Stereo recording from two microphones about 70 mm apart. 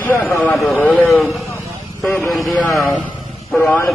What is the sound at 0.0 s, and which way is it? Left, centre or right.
A man's voice, left.